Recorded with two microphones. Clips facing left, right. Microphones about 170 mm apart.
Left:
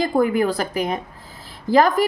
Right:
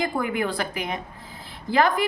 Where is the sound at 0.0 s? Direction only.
40° left (ahead or behind).